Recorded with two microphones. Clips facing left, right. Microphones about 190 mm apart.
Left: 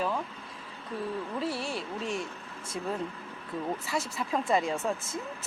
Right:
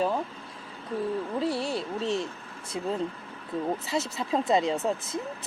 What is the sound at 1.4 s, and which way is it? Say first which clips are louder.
Speech: right 5 dB; 25° right (ahead or behind).